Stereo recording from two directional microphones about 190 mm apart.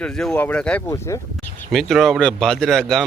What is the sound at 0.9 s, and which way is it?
Speech, 15° left (ahead or behind).